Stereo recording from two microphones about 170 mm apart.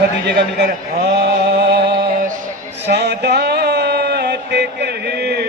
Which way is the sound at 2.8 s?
75° right (ahead or behind).